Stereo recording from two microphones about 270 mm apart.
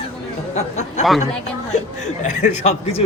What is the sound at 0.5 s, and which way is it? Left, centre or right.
Speech, left.